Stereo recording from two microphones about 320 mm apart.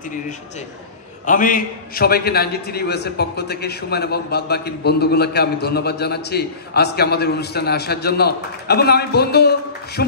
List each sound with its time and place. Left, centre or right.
1.2 s a man's voice: left